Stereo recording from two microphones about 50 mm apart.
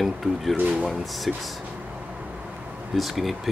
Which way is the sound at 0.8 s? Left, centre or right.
Centre.